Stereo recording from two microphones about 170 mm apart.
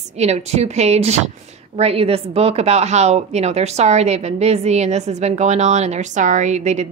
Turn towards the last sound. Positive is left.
turn(degrees=-45)  # may be behind; listen again after turning